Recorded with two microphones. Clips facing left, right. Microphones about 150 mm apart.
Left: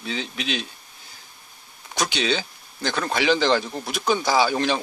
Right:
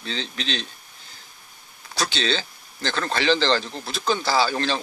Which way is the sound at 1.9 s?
15° left (ahead or behind).